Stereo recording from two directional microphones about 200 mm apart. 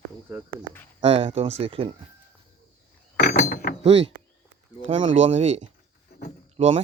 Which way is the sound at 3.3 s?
40° left (ahead or behind).